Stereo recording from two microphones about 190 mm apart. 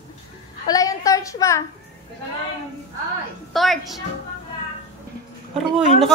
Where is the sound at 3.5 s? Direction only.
Centre (ahead or behind).